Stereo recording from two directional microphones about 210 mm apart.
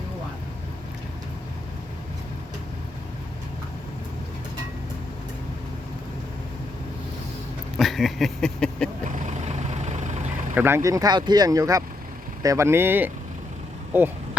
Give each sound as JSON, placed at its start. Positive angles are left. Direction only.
{"t": 7.8, "sound": "a sound", "side_deg": 0}
{"t": 9.0, "sound": "vehicle", "side_deg": -35}
{"t": 10.5, "sound": "speech", "side_deg": -10}